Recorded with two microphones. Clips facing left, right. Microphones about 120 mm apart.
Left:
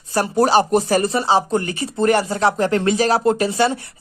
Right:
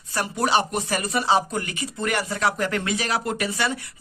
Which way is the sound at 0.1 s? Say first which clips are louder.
Left 7 dB; 35° left (ahead or behind).